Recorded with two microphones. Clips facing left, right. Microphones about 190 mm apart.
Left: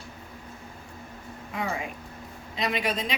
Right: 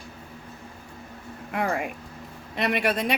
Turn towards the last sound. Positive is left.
turn(degrees=-65)  # may be behind; listen again after turning